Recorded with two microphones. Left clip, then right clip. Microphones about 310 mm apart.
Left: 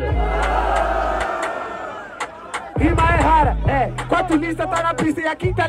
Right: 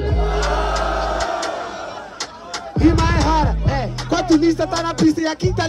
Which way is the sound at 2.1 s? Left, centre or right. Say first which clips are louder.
Left 1 dB; centre.